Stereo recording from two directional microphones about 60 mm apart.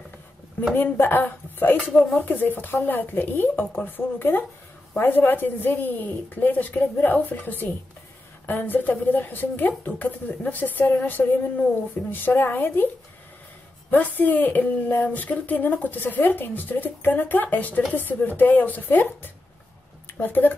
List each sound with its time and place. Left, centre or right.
0.7 s speech: left
13.8 s speech: left